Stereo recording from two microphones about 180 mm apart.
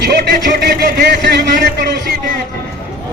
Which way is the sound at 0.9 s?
55° right (ahead or behind).